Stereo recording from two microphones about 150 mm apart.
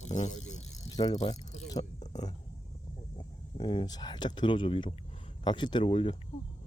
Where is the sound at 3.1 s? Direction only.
30° left (ahead or behind).